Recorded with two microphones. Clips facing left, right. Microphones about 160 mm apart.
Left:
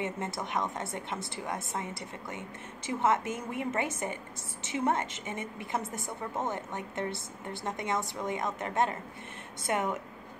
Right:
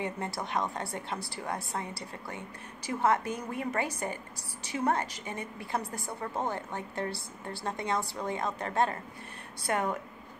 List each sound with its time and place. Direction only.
0.0 s a woman's voice: 20° left (ahead or behind)